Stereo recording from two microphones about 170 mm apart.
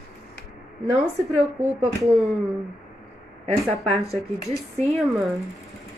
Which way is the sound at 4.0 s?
20° left (ahead or behind).